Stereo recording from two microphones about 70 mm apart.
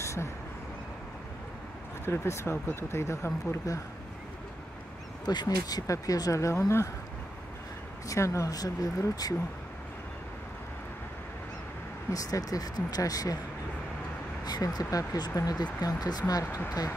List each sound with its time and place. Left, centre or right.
0.0 s vehicle: left
2.0 s speech: left
3.7 s speech: left
5.2 s speech: left
5.9 s speech: left
8.1 s speech: left
8.5 s speech: left
12.1 s speech: left
14.4 s speech: left